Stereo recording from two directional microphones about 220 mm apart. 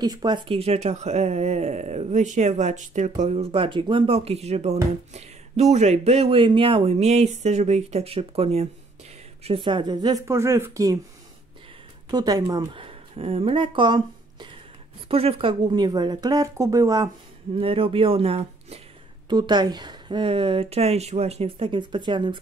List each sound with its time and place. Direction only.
0.0 s speech: 20° right (ahead or behind)
12.1 s speech: 15° right (ahead or behind)